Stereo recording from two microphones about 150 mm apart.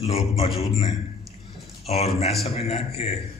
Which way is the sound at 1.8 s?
45° left (ahead or behind).